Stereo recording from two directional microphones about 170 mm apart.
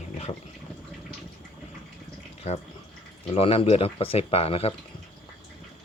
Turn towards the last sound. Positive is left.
turn(degrees=35)  # may be behind; listen again after turning